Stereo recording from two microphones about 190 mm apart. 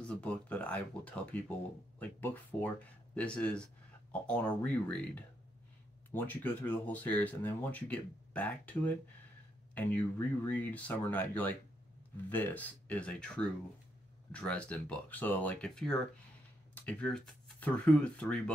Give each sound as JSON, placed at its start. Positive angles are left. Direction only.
{"t": 0.0, "sound": "speech", "side_deg": 5}